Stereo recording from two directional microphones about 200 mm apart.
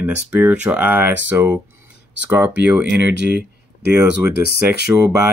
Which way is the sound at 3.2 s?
55° right (ahead or behind).